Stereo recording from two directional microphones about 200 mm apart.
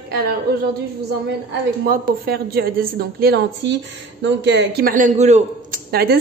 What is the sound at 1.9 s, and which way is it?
A woman's voice, 50° right (ahead or behind).